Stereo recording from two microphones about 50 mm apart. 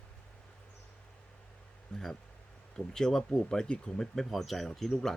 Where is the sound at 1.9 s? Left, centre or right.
Centre.